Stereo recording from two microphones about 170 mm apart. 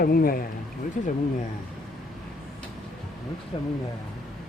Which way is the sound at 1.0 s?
45° left (ahead or behind).